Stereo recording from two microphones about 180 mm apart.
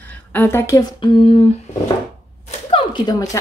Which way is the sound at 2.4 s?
35° left (ahead or behind).